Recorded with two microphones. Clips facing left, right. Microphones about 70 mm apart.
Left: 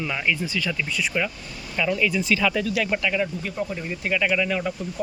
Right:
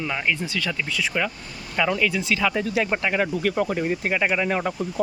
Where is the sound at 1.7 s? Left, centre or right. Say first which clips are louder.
Right 1 dB; right.